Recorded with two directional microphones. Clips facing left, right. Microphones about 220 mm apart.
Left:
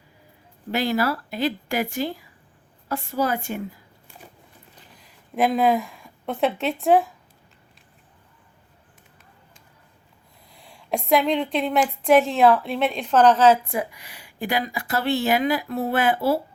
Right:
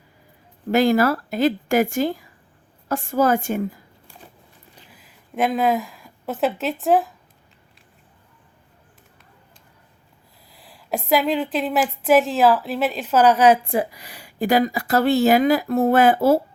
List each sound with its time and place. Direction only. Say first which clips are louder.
0.7 s speech: right 6 dB; 45° right (ahead or behind)
4.9 s a woman's voice: even; 5° right (ahead or behind)
10.5 s a woman's voice: even; centre (ahead or behind)
13.7 s speech: right 5 dB; 35° right (ahead or behind)